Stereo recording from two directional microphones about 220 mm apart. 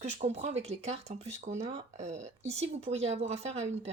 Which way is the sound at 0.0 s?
30° right (ahead or behind).